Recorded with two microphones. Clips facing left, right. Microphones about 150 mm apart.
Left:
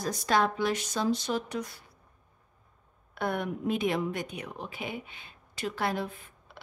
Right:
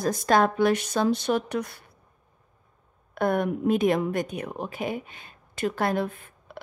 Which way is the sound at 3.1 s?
50° right (ahead or behind).